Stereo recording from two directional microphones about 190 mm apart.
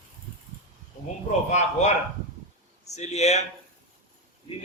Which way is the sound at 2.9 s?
35° left (ahead or behind).